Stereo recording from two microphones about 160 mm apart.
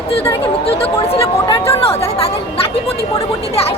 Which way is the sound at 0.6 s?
35° left (ahead or behind).